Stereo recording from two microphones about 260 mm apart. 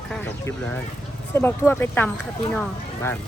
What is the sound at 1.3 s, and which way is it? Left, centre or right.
Speech, centre.